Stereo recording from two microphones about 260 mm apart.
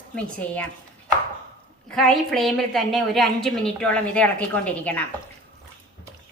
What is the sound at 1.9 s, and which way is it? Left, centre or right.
A woman's voice, centre.